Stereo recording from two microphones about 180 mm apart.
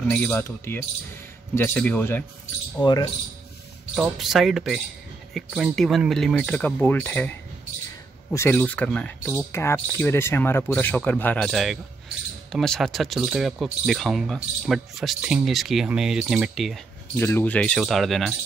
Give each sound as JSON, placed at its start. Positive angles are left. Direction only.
{"t": 0.1, "sound": "speech", "side_deg": 10}
{"t": 2.8, "sound": "speech", "side_deg": 20}
{"t": 3.9, "sound": "speech", "side_deg": 0}
{"t": 17.2, "sound": "speech", "side_deg": 10}